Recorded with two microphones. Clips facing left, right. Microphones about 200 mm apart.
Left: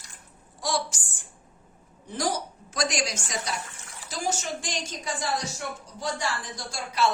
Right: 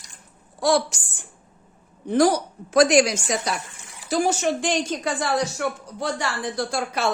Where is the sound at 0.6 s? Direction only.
65° right (ahead or behind).